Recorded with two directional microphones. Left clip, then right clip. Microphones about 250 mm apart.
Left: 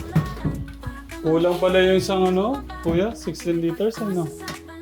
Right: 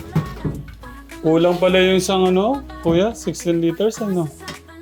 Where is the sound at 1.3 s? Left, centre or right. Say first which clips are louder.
Right 3 dB; right.